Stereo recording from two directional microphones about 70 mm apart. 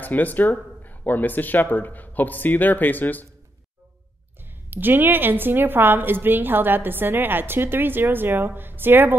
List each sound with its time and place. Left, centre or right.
0.0 s speech: left
4.6 s a woman's voice: right